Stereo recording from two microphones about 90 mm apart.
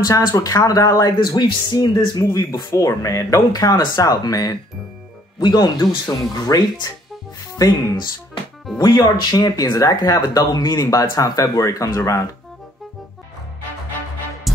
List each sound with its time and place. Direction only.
0.0 s speech: 40° left (ahead or behind)
2.7 s speech: 35° left (ahead or behind)